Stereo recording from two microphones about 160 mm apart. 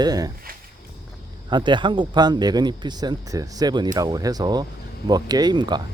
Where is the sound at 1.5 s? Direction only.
30° right (ahead or behind).